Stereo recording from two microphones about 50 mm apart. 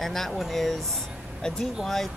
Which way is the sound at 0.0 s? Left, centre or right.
Centre.